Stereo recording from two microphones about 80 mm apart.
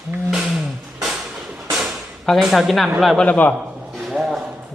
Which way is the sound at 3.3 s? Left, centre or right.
Centre.